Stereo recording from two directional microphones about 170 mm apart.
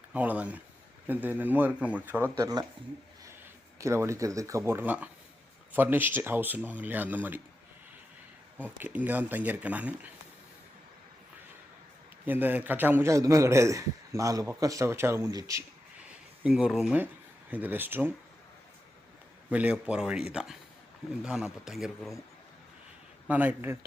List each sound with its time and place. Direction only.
0.1 s a man's voice: 10° right (ahead or behind)
3.8 s a man's voice: 15° right (ahead or behind)
8.8 s a man's voice: 10° right (ahead or behind)
12.2 s a man's voice: 10° right (ahead or behind)
16.4 s a man's voice: 5° right (ahead or behind)
19.5 s speech: 10° right (ahead or behind)
23.2 s a man's voice: 10° right (ahead or behind)